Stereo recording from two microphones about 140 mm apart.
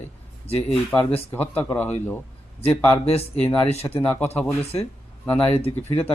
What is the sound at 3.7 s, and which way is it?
Speech, 45° left (ahead or behind).